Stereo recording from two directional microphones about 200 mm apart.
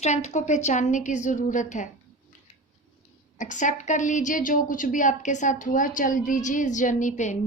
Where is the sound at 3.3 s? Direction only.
40° left (ahead or behind).